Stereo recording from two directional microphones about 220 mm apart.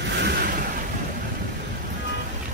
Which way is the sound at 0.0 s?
50° right (ahead or behind).